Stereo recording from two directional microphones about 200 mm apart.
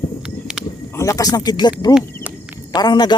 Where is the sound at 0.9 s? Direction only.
15° left (ahead or behind).